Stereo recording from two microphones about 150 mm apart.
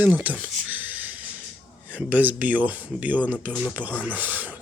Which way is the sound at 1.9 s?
10° right (ahead or behind).